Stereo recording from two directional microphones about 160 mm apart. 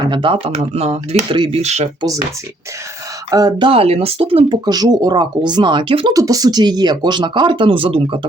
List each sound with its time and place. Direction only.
0.0 s speech: 30° right (ahead or behind)
3.2 s speech: 25° right (ahead or behind)
3.7 s speech: 40° right (ahead or behind)
6.1 s speech: 20° right (ahead or behind)